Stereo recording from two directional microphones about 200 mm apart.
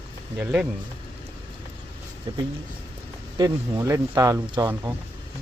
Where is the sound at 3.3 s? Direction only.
15° right (ahead or behind).